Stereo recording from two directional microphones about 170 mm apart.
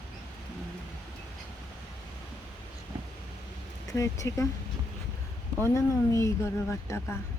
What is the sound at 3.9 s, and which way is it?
Speech, 20° left (ahead or behind).